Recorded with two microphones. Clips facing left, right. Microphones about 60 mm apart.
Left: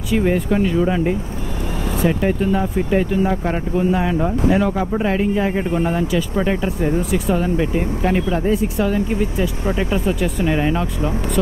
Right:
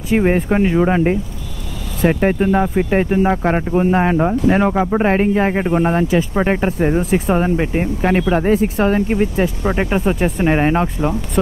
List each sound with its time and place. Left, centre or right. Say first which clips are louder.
0.1 s speech: right 3 dB; right